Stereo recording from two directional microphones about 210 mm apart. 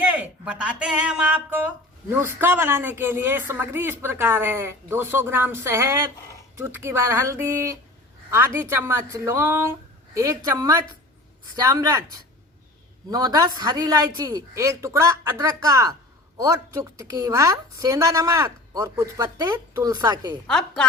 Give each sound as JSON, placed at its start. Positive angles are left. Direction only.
{"t": 0.0, "sound": "speech", "side_deg": -5}
{"t": 20.5, "sound": "a woman's voice", "side_deg": 5}